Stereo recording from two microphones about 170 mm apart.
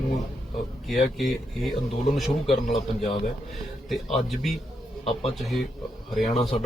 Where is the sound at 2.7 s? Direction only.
40° left (ahead or behind).